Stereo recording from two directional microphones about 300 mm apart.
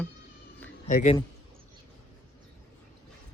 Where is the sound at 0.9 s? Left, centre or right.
Left.